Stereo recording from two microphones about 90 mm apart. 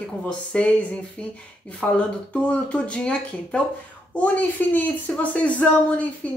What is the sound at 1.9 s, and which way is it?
Speech, 15° left (ahead or behind).